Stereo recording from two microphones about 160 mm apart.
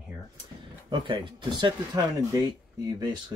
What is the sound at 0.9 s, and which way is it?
Speech, 30° right (ahead or behind).